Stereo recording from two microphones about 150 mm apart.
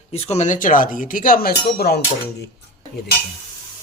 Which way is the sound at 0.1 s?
45° left (ahead or behind).